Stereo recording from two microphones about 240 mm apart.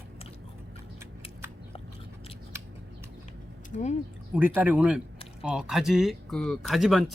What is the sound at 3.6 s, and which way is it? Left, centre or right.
Speech, left.